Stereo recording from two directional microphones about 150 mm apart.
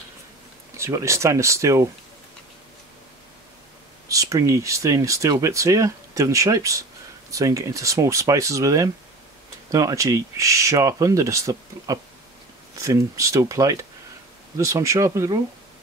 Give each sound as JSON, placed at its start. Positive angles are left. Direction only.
{"t": 0.7, "sound": "speech", "side_deg": -20}
{"t": 4.1, "sound": "speech", "side_deg": -20}